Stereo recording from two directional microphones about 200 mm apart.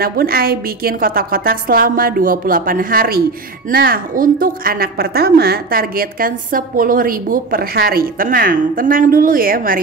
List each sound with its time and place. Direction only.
0.0 s a woman's voice: 50° right (ahead or behind)